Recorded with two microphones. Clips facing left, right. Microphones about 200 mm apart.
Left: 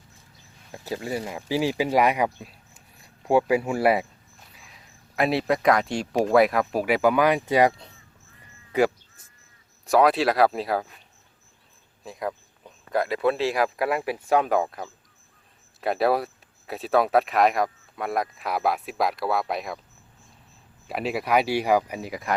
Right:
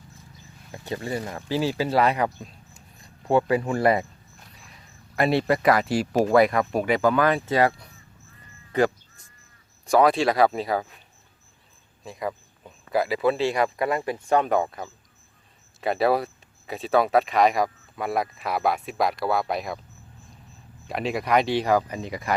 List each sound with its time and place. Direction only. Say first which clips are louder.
0.7 s speech: even; 5° left (ahead or behind); by 7.9 s 20° left (ahead or behind)
8.7 s speech: even; 10° left (ahead or behind)
12.0 s speech: even; centre (ahead or behind)
20.8 s speech: even; 5° left (ahead or behind)